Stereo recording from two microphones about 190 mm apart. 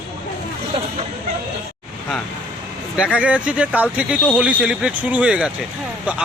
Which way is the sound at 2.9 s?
5° right (ahead or behind).